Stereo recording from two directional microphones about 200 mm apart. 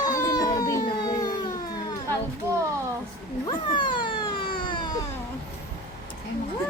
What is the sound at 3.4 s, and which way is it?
Cat, 25° left (ahead or behind).